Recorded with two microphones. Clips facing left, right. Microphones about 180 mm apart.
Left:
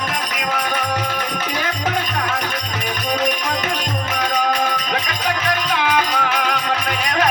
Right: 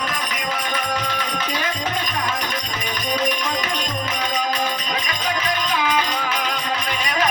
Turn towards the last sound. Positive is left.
turn(degrees=65)  # may be behind; listen again after turning